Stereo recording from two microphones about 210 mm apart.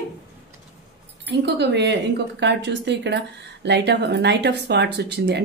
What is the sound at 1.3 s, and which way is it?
Speech, 55° right (ahead or behind).